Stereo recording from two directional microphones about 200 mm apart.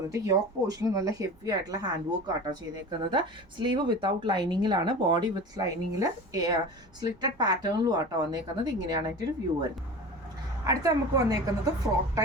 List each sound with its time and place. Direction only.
0.1 s speech: 15° right (ahead or behind)